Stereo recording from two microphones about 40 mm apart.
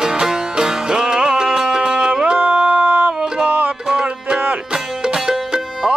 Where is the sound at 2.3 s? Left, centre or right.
Right.